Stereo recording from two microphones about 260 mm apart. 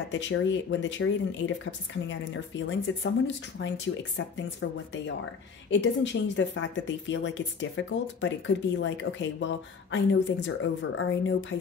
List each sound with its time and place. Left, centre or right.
0.1 s speech: left